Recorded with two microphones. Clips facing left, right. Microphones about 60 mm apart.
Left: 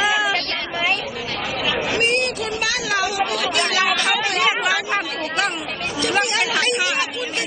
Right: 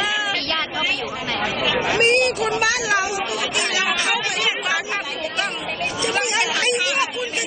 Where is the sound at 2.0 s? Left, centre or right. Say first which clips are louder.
Right 3 dB; right; by 4.1 s centre.